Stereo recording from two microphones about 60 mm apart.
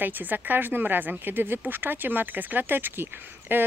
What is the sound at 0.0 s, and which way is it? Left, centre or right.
Speech, right.